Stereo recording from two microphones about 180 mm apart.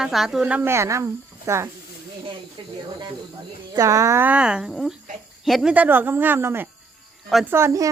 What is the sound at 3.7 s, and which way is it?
Speech, 20° right (ahead or behind).